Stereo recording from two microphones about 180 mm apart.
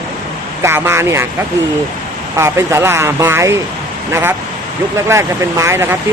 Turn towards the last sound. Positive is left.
turn(degrees=-15)  # may be behind; listen again after turning